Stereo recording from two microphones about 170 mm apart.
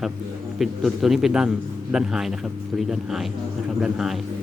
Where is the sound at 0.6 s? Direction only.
Centre (ahead or behind).